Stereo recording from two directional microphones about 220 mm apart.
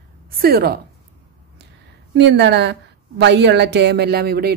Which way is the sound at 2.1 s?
50° right (ahead or behind).